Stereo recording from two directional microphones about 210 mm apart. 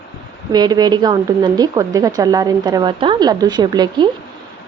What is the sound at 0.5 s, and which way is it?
Speech, 20° right (ahead or behind).